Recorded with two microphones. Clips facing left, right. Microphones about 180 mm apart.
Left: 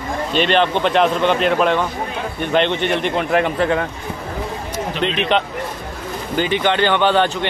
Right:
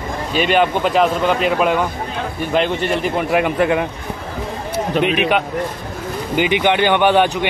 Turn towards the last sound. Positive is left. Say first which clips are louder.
# right 2 dB
turn(degrees=-15)  # may be behind; listen again after turning